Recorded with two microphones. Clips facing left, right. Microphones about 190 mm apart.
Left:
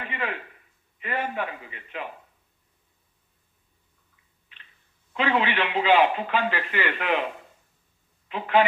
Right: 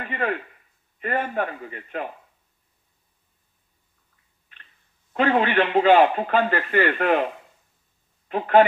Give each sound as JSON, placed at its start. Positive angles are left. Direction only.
{"t": 0.0, "sound": "a sound", "side_deg": -45}
{"t": 0.9, "sound": "speech", "side_deg": -45}
{"t": 5.1, "sound": "speech", "side_deg": -45}
{"t": 8.3, "sound": "speech", "side_deg": -50}